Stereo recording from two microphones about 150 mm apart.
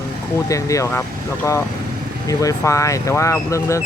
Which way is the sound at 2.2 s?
20° left (ahead or behind).